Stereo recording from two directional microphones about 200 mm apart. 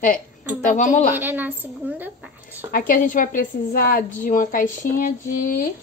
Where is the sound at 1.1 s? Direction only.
10° right (ahead or behind).